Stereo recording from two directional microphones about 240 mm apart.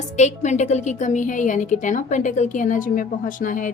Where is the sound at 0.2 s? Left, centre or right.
Left.